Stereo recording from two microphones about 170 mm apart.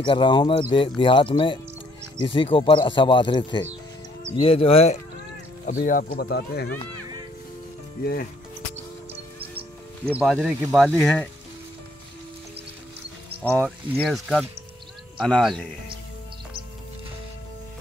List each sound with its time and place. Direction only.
0.0 s speech: 30° left (ahead or behind)
5.7 s speech: 50° left (ahead or behind)
6.1 s speech: 75° left (ahead or behind)
6.9 s music: 25° right (ahead or behind)
8.0 s speech: 60° left (ahead or behind)
10.1 s speech: centre (ahead or behind)
13.4 s speech: 5° left (ahead or behind)